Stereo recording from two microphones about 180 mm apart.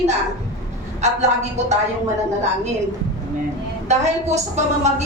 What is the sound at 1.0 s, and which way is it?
Speech, 40° right (ahead or behind).